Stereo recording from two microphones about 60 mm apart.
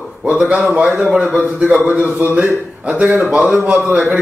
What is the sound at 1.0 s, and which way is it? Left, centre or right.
A man's voice, centre.